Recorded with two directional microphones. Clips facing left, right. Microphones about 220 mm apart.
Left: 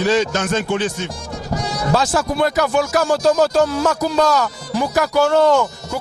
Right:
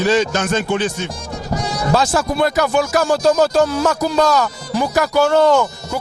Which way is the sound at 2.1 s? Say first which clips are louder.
Right 1 dB; 25° right (ahead or behind).